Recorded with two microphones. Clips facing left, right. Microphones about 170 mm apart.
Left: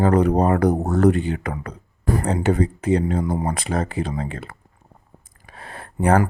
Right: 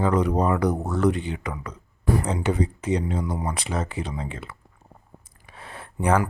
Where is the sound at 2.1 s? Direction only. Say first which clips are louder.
Left 7 dB; 40° left (ahead or behind).